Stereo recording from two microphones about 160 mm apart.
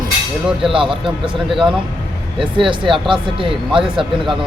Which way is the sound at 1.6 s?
5° right (ahead or behind).